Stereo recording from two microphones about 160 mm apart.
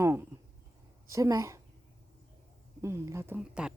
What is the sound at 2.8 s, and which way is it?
Speech, 15° right (ahead or behind).